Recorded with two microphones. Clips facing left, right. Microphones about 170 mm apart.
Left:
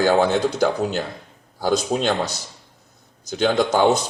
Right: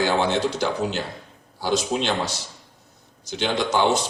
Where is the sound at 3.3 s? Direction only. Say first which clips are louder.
Left 4 dB; 45° left (ahead or behind).